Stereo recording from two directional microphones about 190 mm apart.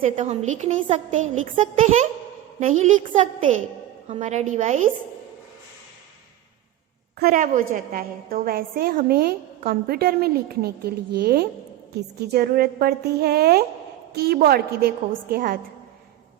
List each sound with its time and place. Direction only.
0.0 s a woman's voice: 40° right (ahead or behind)
3.0 s a woman's voice: 25° right (ahead or behind)
4.1 s a woman's voice: 35° right (ahead or behind)
7.2 s a woman's voice: 50° right (ahead or behind)